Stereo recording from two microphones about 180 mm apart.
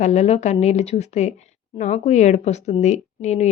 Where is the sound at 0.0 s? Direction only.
40° left (ahead or behind).